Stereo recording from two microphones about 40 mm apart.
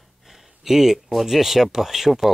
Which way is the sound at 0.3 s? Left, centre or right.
Centre.